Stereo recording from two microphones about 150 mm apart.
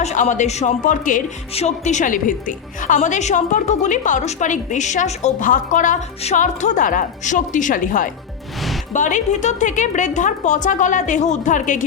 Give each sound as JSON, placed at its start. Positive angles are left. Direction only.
{"t": 0.0, "sound": "a woman's voice", "side_deg": 50}
{"t": 1.5, "sound": "a woman's voice", "side_deg": 50}